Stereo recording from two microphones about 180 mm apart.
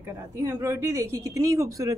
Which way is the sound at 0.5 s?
15° right (ahead or behind).